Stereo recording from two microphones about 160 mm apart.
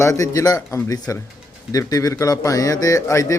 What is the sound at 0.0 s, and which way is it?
A man's voice, 20° left (ahead or behind).